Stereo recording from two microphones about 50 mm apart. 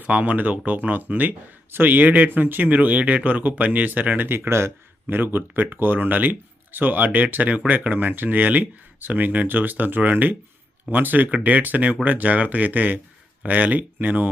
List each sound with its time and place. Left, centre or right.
0.0 s speech: right
4.3 s speech: right
5.0 s speech: right